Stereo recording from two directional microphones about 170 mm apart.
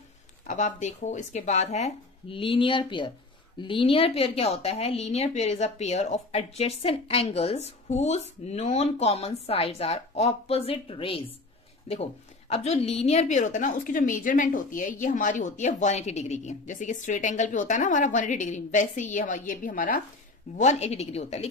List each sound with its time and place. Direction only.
0.5 s a woman's voice: 45° left (ahead or behind)
20.5 s a woman's voice: 40° left (ahead or behind)